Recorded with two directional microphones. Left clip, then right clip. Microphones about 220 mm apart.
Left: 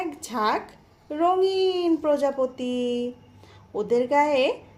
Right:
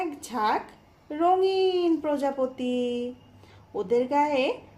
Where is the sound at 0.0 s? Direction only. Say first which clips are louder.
Left 1 dB; 15° left (ahead or behind).